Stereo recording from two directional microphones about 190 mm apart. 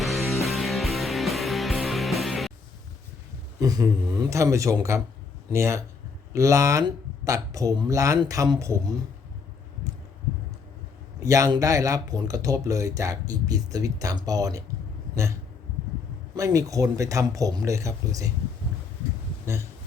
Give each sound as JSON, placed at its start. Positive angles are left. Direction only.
{"t": 0.0, "sound": "music", "side_deg": 0}
{"t": 3.6, "sound": "speech", "side_deg": -20}
{"t": 11.2, "sound": "speech", "side_deg": -15}
{"t": 16.3, "sound": "speech", "side_deg": -20}